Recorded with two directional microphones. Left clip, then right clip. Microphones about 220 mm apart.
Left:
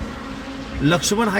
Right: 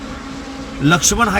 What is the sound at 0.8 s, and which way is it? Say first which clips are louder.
Speech: right 5 dB; centre (ahead or behind).